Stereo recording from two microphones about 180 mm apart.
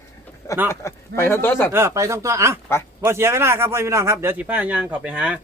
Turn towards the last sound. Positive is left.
turn(degrees=-5)  # may be behind; listen again after turning